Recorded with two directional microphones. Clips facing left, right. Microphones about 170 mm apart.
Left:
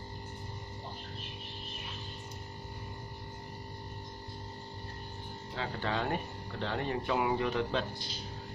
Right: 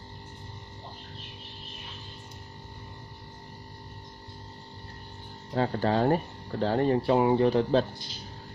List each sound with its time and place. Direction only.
5.5 s speech: 40° right (ahead or behind)